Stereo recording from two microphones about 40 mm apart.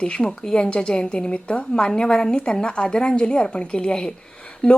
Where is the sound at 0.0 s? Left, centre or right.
Left.